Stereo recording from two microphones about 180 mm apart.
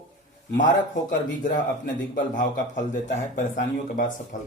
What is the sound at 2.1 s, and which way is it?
A man's voice, 50° left (ahead or behind).